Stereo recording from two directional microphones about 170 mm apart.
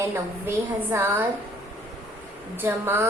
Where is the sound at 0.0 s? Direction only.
15° right (ahead or behind).